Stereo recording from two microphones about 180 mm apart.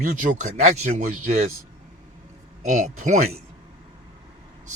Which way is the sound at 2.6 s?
40° right (ahead or behind).